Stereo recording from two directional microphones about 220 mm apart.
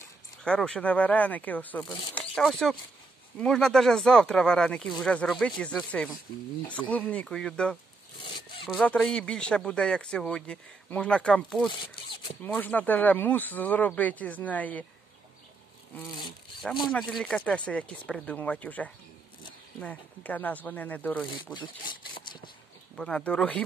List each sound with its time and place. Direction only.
0.4 s speech: 5° left (ahead or behind)
16.6 s speech: centre (ahead or behind)
22.1 s a sound: 20° left (ahead or behind)
22.9 s speech: 5° left (ahead or behind)